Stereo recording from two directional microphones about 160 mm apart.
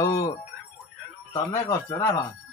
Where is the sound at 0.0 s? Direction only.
20° left (ahead or behind).